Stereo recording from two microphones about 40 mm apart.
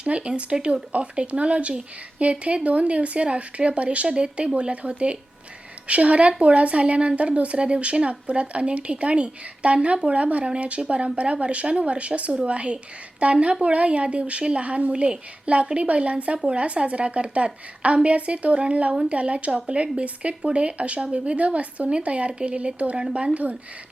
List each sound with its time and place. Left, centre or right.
0.0 s a woman's voice: right